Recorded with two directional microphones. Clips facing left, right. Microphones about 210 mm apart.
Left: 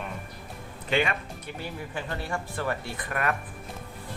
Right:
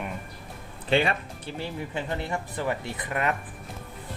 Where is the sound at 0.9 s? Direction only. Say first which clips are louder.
Right 3 dB; 30° right (ahead or behind).